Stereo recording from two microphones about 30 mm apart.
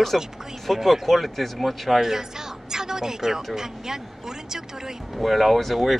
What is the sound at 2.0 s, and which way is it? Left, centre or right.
Speech, centre.